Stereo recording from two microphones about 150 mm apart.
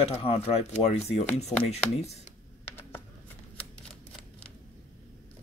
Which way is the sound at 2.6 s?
15° left (ahead or behind).